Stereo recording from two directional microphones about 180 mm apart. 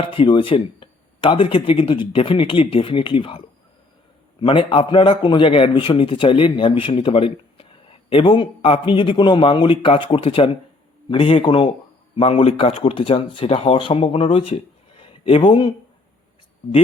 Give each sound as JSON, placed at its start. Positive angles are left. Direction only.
{"t": 0.0, "sound": "a man's voice", "side_deg": 30}